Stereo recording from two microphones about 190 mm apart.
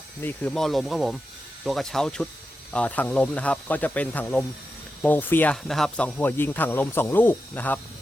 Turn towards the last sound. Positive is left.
turn(degrees=10)  # may be behind; listen again after turning